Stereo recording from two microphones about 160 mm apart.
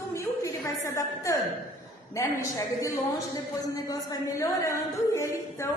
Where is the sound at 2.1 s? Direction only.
20° left (ahead or behind).